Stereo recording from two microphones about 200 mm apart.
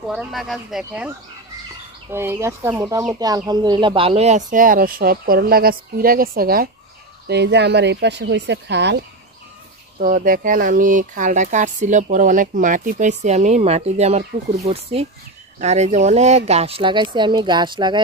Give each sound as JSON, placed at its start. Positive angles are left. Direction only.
{"t": 0.1, "sound": "speech", "side_deg": 0}
{"t": 9.9, "sound": "speech", "side_deg": -40}